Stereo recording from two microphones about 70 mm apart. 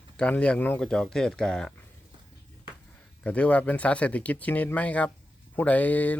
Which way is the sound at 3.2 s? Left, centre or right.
Centre.